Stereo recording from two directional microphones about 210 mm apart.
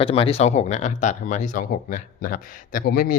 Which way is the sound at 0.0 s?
25° left (ahead or behind).